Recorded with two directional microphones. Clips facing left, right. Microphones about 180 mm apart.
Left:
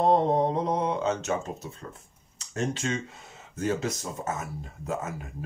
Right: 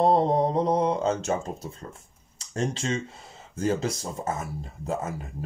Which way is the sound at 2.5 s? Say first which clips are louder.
Right 1 dB; 35° right (ahead or behind).